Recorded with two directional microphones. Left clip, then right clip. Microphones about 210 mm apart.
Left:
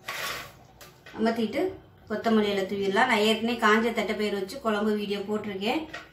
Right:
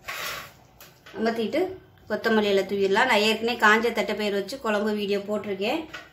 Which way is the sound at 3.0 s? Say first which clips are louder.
Even; 45° right (ahead or behind).